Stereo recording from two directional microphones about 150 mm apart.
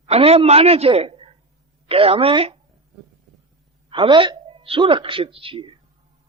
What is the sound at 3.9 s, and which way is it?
A woman's voice, 35° right (ahead or behind).